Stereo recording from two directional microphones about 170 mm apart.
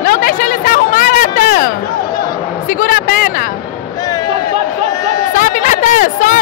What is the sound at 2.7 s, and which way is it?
Speech, 55° left (ahead or behind).